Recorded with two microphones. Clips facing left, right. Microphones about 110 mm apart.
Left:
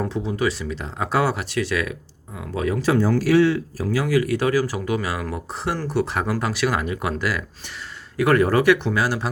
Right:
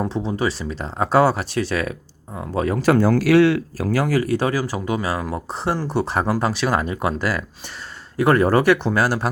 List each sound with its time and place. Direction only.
0.0 s speech: 25° right (ahead or behind)
2.8 s speech: 60° right (ahead or behind)
3.8 s speech: 45° right (ahead or behind)